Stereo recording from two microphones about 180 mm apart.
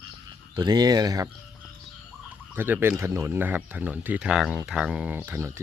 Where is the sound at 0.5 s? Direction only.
25° right (ahead or behind).